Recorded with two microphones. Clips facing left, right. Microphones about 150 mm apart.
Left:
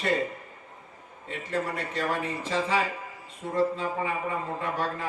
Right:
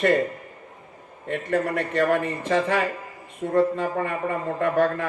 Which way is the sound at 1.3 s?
60° right (ahead or behind).